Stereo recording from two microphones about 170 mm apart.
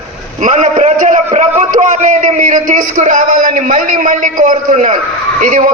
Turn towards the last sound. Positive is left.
turn(degrees=-50)  # may be behind; listen again after turning